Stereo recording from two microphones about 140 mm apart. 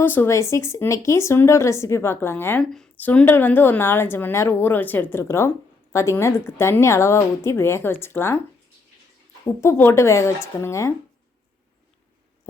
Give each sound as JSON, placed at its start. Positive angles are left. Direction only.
{"t": 0.0, "sound": "a woman's voice", "side_deg": 15}
{"t": 9.6, "sound": "speech", "side_deg": 20}